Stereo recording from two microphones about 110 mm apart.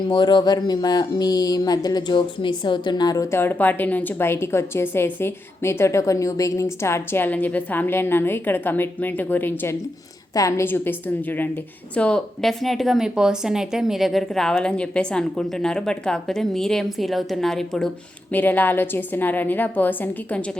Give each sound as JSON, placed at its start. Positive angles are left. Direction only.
{"t": 0.1, "sound": "a sound", "side_deg": 45}
{"t": 3.3, "sound": "a woman's voice", "side_deg": 20}
{"t": 10.3, "sound": "a woman's voice", "side_deg": 30}
{"t": 10.7, "sound": "a woman's voice", "side_deg": 15}
{"t": 18.3, "sound": "a woman's voice", "side_deg": 15}